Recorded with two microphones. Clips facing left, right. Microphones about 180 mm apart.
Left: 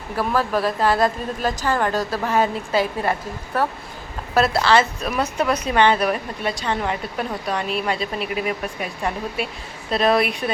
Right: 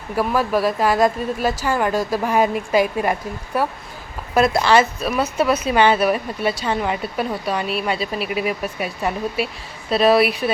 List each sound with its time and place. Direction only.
0.2 s a woman's voice: 10° right (ahead or behind)